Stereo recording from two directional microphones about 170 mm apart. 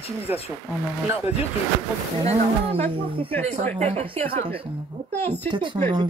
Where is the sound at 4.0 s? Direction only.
35° right (ahead or behind).